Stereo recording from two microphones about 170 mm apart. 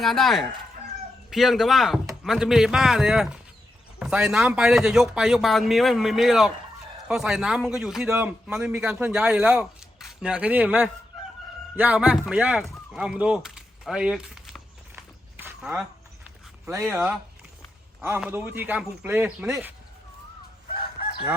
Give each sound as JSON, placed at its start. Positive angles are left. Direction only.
{"t": 0.0, "sound": "a man's voice", "side_deg": 0}
{"t": 11.8, "sound": "a sound", "side_deg": -10}
{"t": 18.2, "sound": "speech", "side_deg": -10}
{"t": 20.7, "sound": "crowing", "side_deg": 30}